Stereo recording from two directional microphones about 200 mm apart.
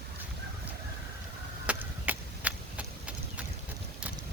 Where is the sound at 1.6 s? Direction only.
10° right (ahead or behind).